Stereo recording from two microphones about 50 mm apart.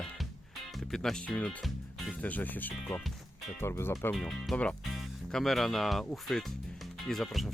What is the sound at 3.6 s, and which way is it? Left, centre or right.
Speech, left.